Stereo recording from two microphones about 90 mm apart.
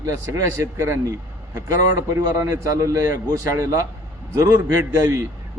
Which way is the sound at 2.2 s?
35° right (ahead or behind).